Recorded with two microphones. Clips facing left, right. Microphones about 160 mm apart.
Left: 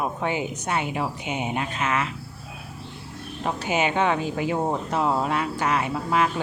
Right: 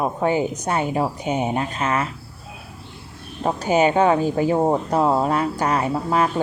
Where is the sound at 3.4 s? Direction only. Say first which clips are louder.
Right 7 dB; 40° right (ahead or behind).